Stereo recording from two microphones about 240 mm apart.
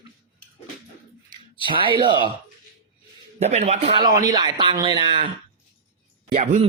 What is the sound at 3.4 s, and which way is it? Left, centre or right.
Speech, right.